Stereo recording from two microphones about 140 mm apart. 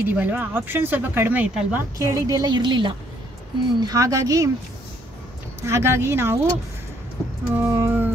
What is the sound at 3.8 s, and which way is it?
Speech, 25° right (ahead or behind).